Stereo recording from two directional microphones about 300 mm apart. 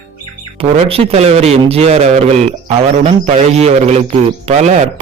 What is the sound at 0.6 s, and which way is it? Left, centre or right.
A man's voice, centre.